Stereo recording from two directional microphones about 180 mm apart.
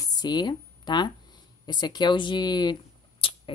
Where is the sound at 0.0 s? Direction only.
20° left (ahead or behind).